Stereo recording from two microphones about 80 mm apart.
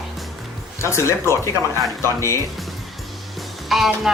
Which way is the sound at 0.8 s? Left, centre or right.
Left.